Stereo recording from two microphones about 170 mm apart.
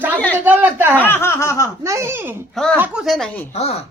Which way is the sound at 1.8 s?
15° right (ahead or behind).